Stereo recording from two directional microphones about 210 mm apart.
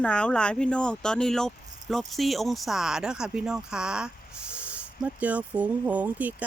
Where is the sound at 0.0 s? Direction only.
5° left (ahead or behind).